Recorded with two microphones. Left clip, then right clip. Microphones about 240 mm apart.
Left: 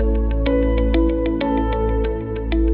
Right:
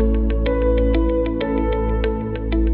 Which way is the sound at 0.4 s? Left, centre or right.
Right.